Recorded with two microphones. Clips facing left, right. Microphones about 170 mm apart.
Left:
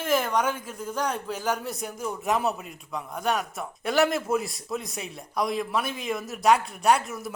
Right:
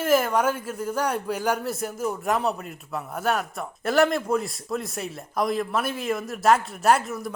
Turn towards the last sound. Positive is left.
turn(degrees=0)  # may be behind; listen again after turning